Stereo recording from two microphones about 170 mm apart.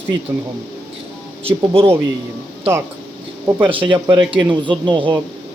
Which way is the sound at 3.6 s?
30° right (ahead or behind).